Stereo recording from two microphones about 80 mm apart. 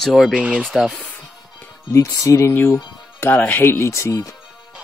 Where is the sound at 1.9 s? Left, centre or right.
Left.